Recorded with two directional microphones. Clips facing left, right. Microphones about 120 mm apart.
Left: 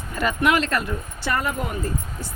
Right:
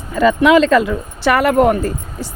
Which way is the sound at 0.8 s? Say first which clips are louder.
Right 11 dB; 90° right.